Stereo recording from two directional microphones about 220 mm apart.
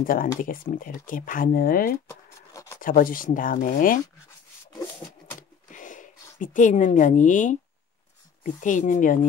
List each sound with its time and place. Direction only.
0.0 s speech: 40° left (ahead or behind)
2.0 s a sound: 15° left (ahead or behind)
2.8 s speech: 40° left (ahead or behind)
5.7 s a woman's voice: 35° left (ahead or behind)
8.5 s speech: 35° left (ahead or behind)